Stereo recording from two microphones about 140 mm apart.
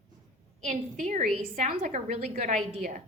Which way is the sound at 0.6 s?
60° right (ahead or behind).